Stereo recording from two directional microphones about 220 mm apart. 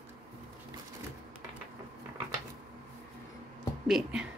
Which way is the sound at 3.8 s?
Centre (ahead or behind).